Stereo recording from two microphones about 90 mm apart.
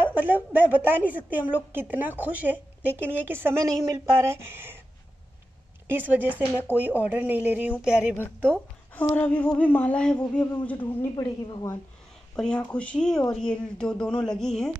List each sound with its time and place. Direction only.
0.0 s a woman's voice: 20° right (ahead or behind)
3.6 s a woman's voice: 40° right (ahead or behind)
5.9 s a woman's voice: 20° right (ahead or behind)
7.8 s a sound: 10° right (ahead or behind)
9.1 s a sound: 20° left (ahead or behind)
10.6 s a man's voice: 20° left (ahead or behind)
11.1 s a woman's voice: 55° left (ahead or behind)
12.4 s a sound: 10° left (ahead or behind)
14.2 s speech: 5° left (ahead or behind)